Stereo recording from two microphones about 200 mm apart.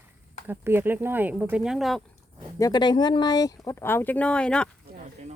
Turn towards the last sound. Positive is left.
turn(degrees=5)  # may be behind; listen again after turning